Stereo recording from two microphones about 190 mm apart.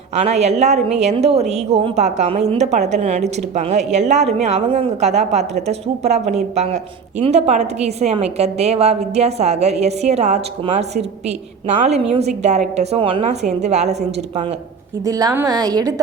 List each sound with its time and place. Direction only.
0.2 s a woman's voice: 35° right (ahead or behind)
15.0 s a woman's voice: 20° right (ahead or behind)